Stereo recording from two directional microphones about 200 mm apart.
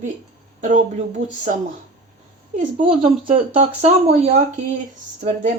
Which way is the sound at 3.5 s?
30° right (ahead or behind).